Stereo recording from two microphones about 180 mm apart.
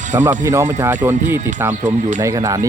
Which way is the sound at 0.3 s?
15° right (ahead or behind).